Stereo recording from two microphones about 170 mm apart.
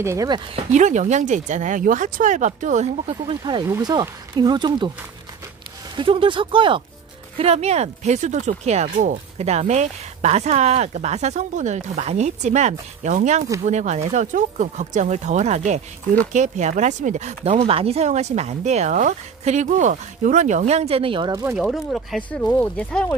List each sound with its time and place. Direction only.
0.0 s speech: 20° right (ahead or behind)
0.7 s speech: 45° right (ahead or behind); by 4.9 s 25° right (ahead or behind)
5.9 s speech: 30° right (ahead or behind)
21.5 s speech: centre (ahead or behind)